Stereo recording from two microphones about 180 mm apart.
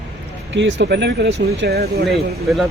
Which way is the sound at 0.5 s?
80° right.